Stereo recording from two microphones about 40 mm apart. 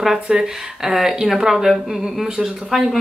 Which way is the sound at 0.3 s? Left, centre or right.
Centre.